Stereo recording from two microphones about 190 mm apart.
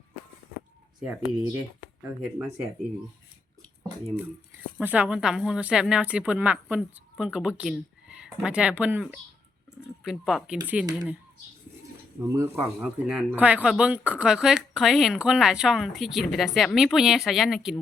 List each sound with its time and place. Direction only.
0.9 s speech: 5° right (ahead or behind)
4.8 s speech: 10° right (ahead or behind)
12.2 s speech: 15° right (ahead or behind)
12.5 s speech: centre (ahead or behind)